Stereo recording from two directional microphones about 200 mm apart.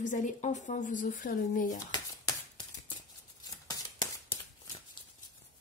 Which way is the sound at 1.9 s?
20° left (ahead or behind).